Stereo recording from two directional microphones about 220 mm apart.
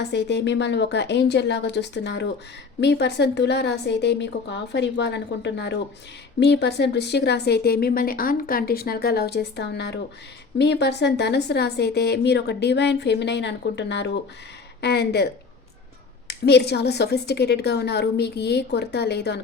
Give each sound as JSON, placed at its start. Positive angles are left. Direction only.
{"t": 0.0, "sound": "speech", "side_deg": 50}